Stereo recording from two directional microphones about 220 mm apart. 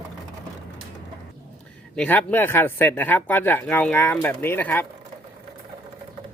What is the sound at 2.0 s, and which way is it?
Speech, 10° left (ahead or behind).